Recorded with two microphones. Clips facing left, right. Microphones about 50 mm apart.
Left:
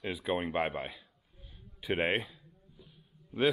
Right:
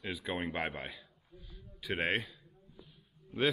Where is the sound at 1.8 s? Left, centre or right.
Centre.